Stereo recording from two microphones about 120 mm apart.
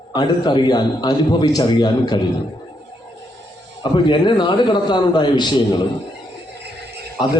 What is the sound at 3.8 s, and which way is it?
A man's voice, 40° left (ahead or behind).